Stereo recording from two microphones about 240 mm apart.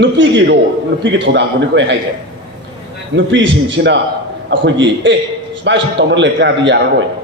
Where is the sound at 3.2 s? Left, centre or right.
Right.